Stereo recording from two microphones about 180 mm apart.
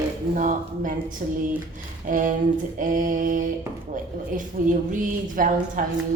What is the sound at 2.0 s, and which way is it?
A woman's voice, 45° right (ahead or behind).